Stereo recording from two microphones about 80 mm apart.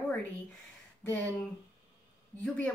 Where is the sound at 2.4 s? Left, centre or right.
Centre.